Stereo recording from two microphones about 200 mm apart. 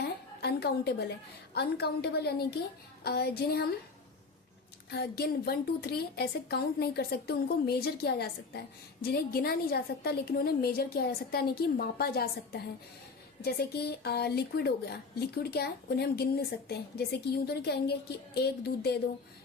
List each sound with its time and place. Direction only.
0.0 s a sound: 55° left (ahead or behind)
1.5 s a woman's voice: 55° left (ahead or behind)
4.9 s a woman's voice: 55° left (ahead or behind)